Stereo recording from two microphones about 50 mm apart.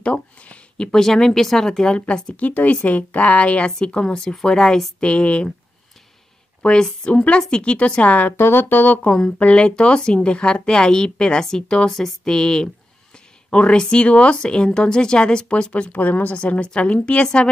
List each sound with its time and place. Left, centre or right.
0.0 s a sound: left
0.9 s speech: centre
5.0 s speech: left
6.6 s speech: left
8.3 s speech: left
9.4 s speech: left
11.9 s a sound: centre
12.3 s speech: centre